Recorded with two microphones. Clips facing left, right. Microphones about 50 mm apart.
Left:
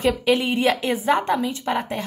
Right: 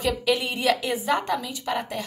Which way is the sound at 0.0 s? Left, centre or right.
Left.